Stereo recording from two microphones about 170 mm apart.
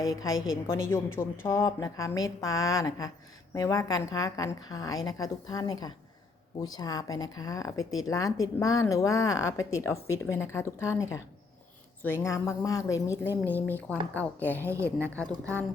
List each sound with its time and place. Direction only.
0.0 s speech: 20° left (ahead or behind)
12.0 s a woman's voice: 15° left (ahead or behind)
15.3 s a woman's voice: 15° right (ahead or behind)